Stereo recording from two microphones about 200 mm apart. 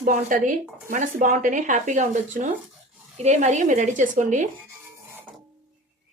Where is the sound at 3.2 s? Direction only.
35° right (ahead or behind).